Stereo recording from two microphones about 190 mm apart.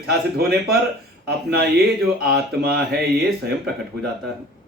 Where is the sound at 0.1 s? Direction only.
55° right (ahead or behind).